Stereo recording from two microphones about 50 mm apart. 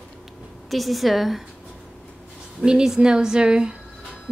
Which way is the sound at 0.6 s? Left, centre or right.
Centre.